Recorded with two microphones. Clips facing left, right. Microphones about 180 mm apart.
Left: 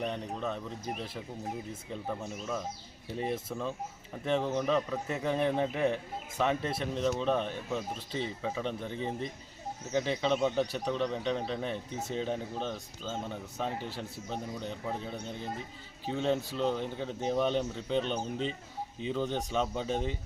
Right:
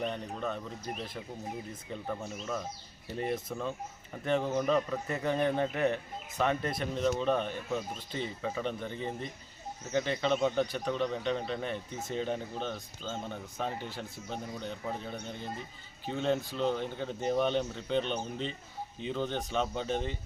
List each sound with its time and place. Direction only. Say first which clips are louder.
0.0 s speech: even; centre (ahead or behind)